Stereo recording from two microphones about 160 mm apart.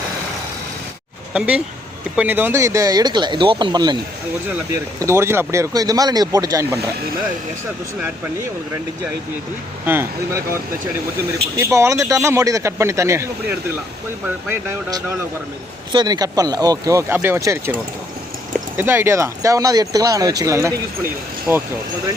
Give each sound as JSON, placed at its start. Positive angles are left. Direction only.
{"t": 1.3, "sound": "speech", "side_deg": -5}
{"t": 9.8, "sound": "speech", "side_deg": -15}
{"t": 18.8, "sound": "speech", "side_deg": -15}